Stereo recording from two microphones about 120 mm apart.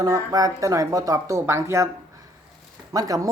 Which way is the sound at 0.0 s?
30° right (ahead or behind).